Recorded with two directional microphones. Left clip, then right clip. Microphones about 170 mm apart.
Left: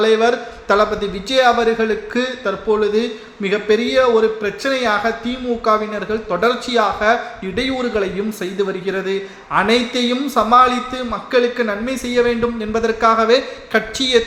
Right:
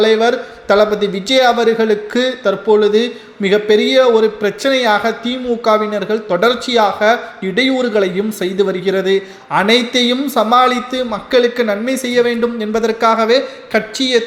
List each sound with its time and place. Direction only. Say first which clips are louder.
0.0 s a man's voice: right 2 dB; 15° right (ahead or behind)